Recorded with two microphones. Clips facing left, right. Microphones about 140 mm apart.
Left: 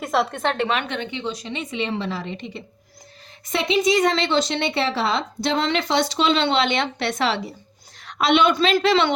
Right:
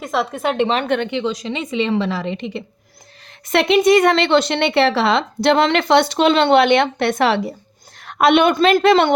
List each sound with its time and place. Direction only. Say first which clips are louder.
0.0 s speech: right 1 dB; centre (ahead or behind)
0.9 s a woman's voice: right 8 dB; 60° right (ahead or behind); by 2.6 s 80° right
3.4 s a woman's voice: right 6 dB; 70° right (ahead or behind); by 9.1 s 50° right (ahead or behind)